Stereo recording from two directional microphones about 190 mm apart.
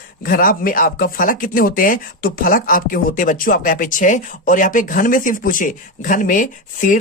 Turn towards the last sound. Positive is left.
turn(degrees=45)  # may be behind; listen again after turning